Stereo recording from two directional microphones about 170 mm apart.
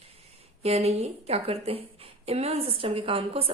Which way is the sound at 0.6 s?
40° right (ahead or behind).